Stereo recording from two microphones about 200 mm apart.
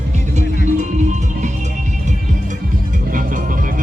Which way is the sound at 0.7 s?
35° right (ahead or behind).